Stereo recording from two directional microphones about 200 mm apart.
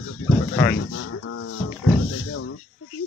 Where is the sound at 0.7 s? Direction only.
90° left.